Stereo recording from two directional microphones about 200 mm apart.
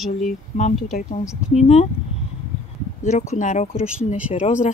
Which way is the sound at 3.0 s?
35° left (ahead or behind).